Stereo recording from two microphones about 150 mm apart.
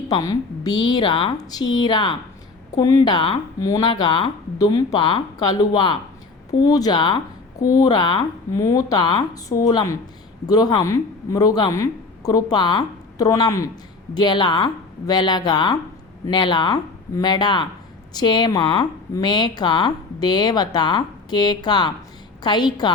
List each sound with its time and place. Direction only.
0.1 s a woman's voice: 25° left (ahead or behind)